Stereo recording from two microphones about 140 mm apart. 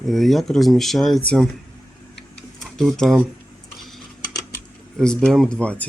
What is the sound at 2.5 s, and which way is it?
Tick-tock, centre (ahead or behind).